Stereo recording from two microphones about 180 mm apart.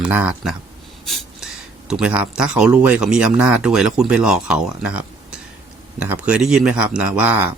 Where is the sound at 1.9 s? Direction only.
5° right (ahead or behind).